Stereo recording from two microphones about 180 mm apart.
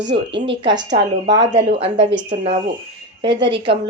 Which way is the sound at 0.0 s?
75° right (ahead or behind).